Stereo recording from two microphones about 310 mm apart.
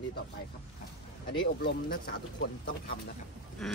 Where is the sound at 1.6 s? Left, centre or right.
Left.